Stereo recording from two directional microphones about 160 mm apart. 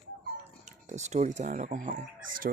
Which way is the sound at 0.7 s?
45° right (ahead or behind).